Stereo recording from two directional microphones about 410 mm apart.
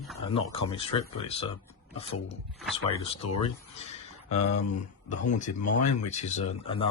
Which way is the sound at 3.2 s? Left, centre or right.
Left.